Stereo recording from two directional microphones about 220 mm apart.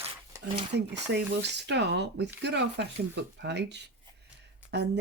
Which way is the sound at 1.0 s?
50° right (ahead or behind).